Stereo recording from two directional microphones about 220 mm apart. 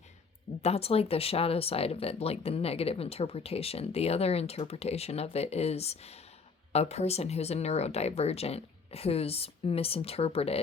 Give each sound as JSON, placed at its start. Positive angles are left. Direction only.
{"t": 0.6, "sound": "speech", "side_deg": 25}